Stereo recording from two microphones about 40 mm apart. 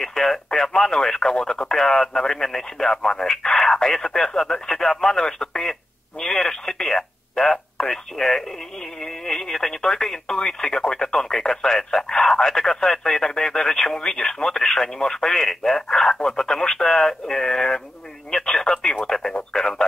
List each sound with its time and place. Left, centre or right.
0.0 s radio: centre
18.3 s telephone: centre
19.0 s radio: centre